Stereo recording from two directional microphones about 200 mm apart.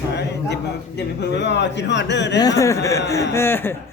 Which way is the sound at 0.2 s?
60° left (ahead or behind).